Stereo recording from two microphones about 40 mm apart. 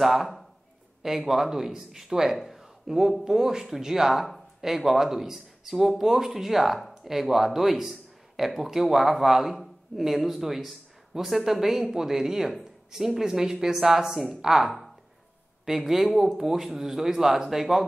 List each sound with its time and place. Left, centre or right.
0.0 s a woman's voice: centre